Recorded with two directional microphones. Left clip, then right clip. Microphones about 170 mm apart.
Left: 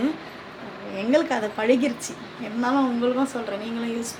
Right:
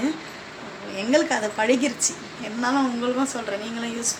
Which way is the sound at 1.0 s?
5° left (ahead or behind).